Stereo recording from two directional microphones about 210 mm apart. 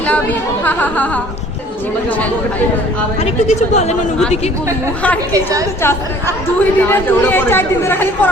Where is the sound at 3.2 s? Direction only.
30° left (ahead or behind).